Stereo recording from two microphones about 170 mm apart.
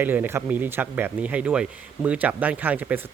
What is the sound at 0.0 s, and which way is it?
Speech, 10° right (ahead or behind).